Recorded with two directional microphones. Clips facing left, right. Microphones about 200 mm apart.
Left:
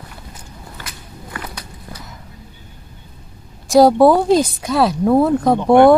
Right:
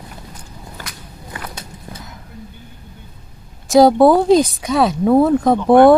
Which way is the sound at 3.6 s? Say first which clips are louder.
Even; centre (ahead or behind).